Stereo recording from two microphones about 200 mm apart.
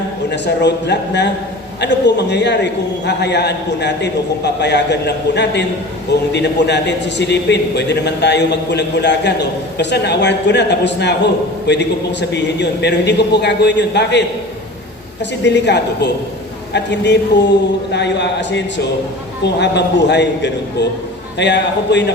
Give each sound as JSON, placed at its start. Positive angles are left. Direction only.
{"t": 0.3, "sound": "a man's voice", "side_deg": 60}